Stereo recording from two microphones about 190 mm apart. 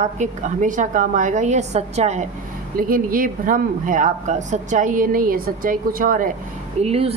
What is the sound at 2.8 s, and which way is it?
Speech, 50° right (ahead or behind).